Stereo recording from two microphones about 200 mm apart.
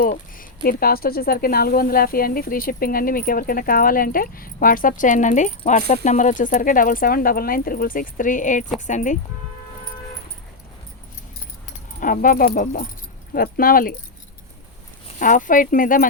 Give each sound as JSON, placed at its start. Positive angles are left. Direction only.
{"t": 0.0, "sound": "speech", "side_deg": 45}
{"t": 11.9, "sound": "speech", "side_deg": 40}
{"t": 15.2, "sound": "speech", "side_deg": 40}